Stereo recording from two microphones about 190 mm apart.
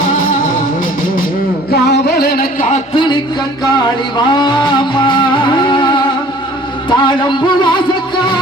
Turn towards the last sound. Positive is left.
turn(degrees=25)  # may be behind; listen again after turning